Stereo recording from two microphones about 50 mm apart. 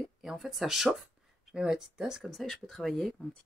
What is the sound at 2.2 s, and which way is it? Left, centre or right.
Speech, centre.